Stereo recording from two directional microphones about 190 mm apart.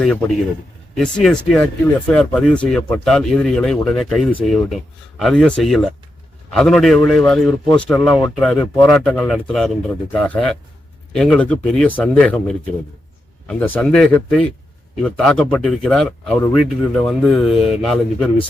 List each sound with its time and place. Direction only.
0.9 s speech: centre (ahead or behind)